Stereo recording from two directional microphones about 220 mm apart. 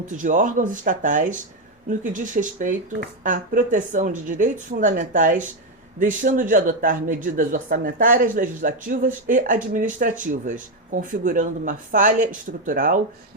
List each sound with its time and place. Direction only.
0.2 s speech: 35° right (ahead or behind)